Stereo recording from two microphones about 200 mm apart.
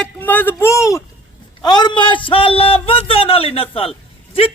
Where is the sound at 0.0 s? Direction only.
10° left (ahead or behind).